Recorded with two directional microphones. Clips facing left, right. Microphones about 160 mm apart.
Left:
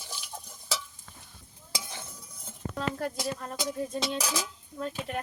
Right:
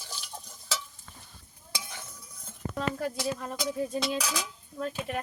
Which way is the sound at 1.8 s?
25° left (ahead or behind).